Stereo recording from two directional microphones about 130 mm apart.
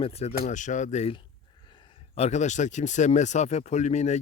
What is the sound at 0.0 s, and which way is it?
Speech, 55° left (ahead or behind).